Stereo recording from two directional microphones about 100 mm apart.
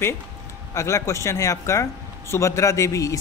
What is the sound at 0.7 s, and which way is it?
Speech, 30° left (ahead or behind).